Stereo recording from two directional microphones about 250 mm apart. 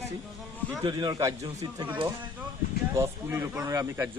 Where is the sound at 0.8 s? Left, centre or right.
Centre.